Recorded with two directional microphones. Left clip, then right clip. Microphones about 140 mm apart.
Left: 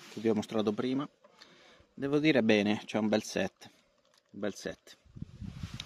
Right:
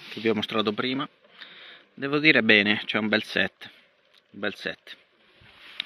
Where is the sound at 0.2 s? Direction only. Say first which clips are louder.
Right 6 dB; 10° left (ahead or behind).